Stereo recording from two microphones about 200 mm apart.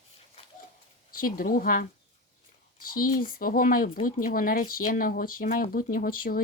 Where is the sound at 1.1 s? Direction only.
45° left (ahead or behind).